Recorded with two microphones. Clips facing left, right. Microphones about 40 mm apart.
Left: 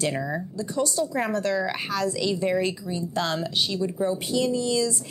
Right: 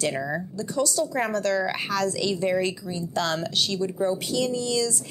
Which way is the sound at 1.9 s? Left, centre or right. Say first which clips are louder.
Right 1 dB; right.